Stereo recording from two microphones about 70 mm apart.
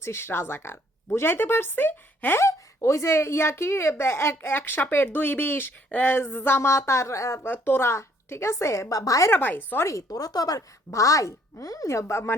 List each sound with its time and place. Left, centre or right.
0.0 s speech: left
2.4 s speech: left
7.4 s speech: left
9.3 s speech: left
9.8 s speech: left